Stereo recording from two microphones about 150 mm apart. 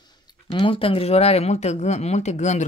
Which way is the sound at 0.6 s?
35° left (ahead or behind).